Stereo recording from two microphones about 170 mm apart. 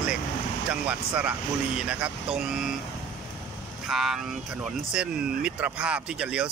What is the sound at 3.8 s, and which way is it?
Speech, centre (ahead or behind).